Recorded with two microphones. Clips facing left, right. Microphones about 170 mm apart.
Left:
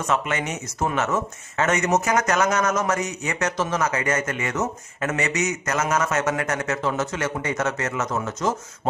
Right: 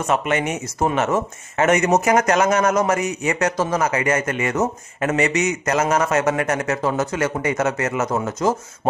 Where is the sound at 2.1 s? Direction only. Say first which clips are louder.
Right 4 dB; 30° right (ahead or behind).